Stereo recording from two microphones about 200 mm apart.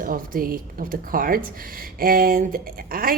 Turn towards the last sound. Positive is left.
turn(degrees=-45)  # may be behind; listen again after turning